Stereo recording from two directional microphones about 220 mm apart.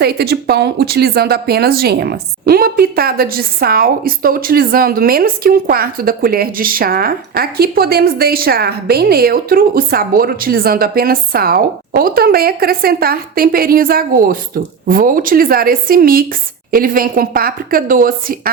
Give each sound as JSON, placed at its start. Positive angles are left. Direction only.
{"t": 0.0, "sound": "a woman's voice", "side_deg": -45}